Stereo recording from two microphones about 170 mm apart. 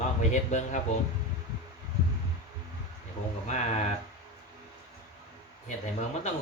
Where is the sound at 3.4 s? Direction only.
45° left (ahead or behind).